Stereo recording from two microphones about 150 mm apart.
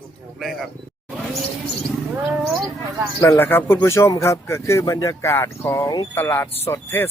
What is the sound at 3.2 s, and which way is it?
Speech, 15° left (ahead or behind).